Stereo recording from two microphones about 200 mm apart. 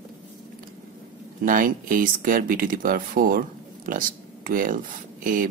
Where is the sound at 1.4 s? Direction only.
45° right (ahead or behind).